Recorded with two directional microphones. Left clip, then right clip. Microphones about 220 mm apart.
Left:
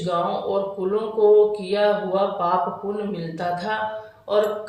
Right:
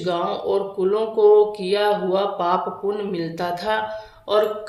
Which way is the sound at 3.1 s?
50° right (ahead or behind).